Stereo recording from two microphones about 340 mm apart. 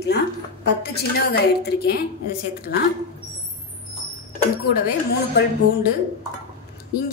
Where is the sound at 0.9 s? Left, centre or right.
Left.